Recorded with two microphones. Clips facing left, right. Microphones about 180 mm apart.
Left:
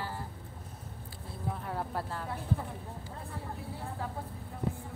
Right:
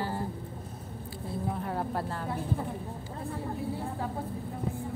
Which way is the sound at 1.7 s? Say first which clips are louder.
Right 4 dB; centre (ahead or behind).